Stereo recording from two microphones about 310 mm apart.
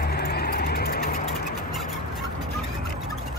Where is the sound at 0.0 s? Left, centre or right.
Left.